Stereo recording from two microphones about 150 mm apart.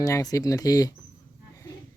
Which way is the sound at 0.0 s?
25° left (ahead or behind).